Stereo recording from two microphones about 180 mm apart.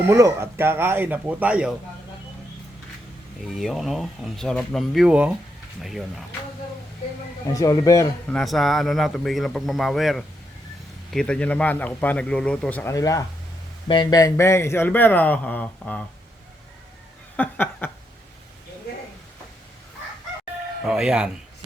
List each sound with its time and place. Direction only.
0.1 s speech: 15° right (ahead or behind)
3.4 s speech: centre (ahead or behind)
7.5 s speech: 20° left (ahead or behind)
8.3 s a man's voice: centre (ahead or behind)
17.3 s a sound: 10° left (ahead or behind)
20.8 s speech: 5° right (ahead or behind)